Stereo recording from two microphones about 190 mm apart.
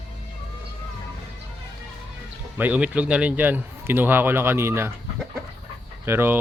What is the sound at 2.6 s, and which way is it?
A man's voice, 10° right (ahead or behind).